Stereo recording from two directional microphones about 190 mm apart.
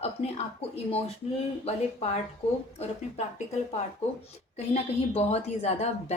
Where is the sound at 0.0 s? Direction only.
35° left (ahead or behind).